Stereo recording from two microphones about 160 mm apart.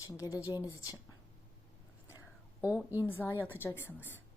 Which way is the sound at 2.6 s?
10° right (ahead or behind).